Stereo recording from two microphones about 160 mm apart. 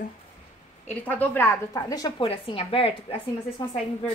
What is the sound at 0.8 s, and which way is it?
A woman's voice, 10° left (ahead or behind).